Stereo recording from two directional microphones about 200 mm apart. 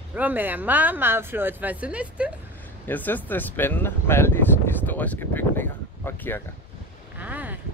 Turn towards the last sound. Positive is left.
turn(degrees=-10)  # may be behind; listen again after turning